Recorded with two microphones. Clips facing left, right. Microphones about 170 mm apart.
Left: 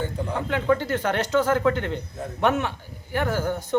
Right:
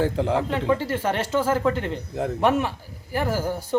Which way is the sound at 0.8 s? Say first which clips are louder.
Even; 5° right (ahead or behind).